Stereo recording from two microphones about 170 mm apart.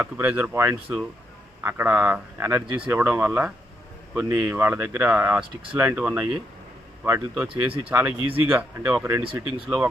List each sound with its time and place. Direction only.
0.0 s speech: 10° right (ahead or behind)